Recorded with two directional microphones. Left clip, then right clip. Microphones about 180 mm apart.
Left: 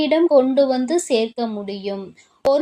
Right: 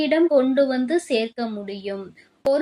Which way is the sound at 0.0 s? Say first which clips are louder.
Left 3 dB; 30° left (ahead or behind).